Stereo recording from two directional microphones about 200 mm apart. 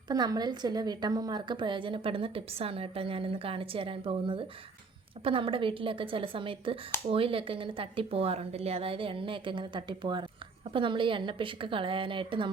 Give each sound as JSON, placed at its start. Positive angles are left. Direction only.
{"t": 0.1, "sound": "a woman's voice", "side_deg": -20}